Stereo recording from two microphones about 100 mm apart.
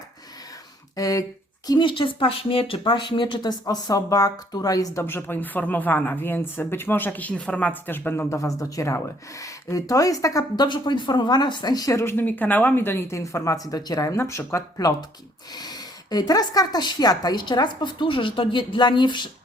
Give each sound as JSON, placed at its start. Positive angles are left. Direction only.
{"t": 0.9, "sound": "speech", "side_deg": 35}
{"t": 1.6, "sound": "a woman's voice", "side_deg": 50}
{"t": 5.0, "sound": "speech", "side_deg": 20}
{"t": 10.7, "sound": "a woman's voice", "side_deg": 50}